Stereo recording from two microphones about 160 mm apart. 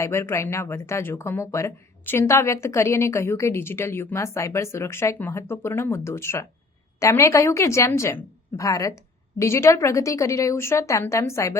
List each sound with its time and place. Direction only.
0.0 s a woman's voice: 15° left (ahead or behind)